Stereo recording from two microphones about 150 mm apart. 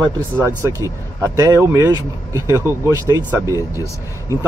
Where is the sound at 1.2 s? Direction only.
25° right (ahead or behind).